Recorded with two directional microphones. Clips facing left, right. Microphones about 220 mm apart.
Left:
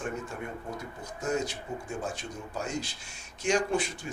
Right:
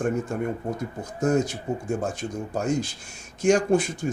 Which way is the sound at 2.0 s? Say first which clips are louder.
Right 7 dB; 45° right (ahead or behind).